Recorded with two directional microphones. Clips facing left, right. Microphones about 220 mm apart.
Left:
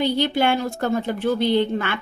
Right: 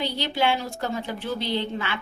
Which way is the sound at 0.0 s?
50° left (ahead or behind).